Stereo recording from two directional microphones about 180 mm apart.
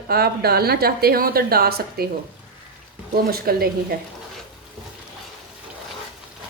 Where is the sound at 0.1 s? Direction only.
60° right (ahead or behind).